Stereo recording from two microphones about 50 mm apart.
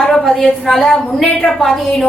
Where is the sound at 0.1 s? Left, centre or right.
Centre.